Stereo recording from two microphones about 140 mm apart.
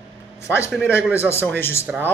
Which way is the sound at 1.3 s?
15° left (ahead or behind).